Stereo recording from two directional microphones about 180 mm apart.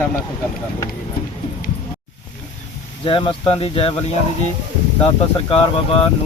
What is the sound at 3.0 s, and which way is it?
Speech, 25° left (ahead or behind).